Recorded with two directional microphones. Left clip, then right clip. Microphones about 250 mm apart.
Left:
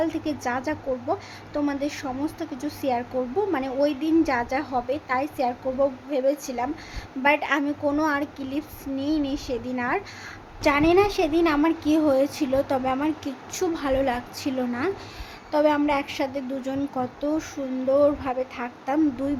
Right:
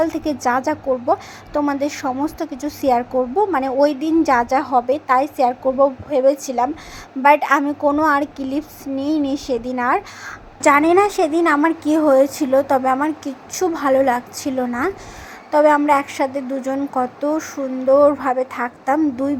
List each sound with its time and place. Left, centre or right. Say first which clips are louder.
0.0 s a child's voice: right 7 dB; centre